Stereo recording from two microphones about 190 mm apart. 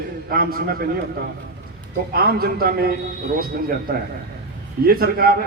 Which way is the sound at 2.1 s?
50° right (ahead or behind).